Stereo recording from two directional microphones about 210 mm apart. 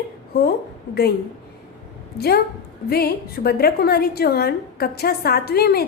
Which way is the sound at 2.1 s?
50° left (ahead or behind).